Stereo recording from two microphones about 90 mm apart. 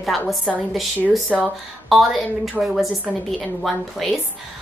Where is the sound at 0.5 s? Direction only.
Centre (ahead or behind).